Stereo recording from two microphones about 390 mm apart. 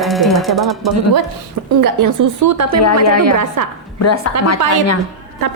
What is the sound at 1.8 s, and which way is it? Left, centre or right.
Speech, right.